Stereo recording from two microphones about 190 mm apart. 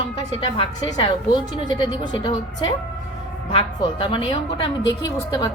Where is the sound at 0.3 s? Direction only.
30° left (ahead or behind).